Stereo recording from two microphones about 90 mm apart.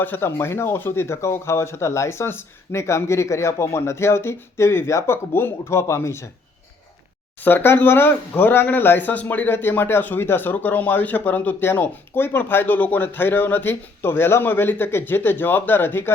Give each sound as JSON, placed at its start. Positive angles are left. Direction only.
{"t": 0.0, "sound": "speech", "side_deg": 25}
{"t": 7.4, "sound": "speech", "side_deg": 25}